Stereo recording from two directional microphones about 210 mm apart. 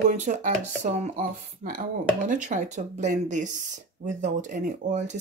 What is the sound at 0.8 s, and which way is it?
Speech, 35° right (ahead or behind).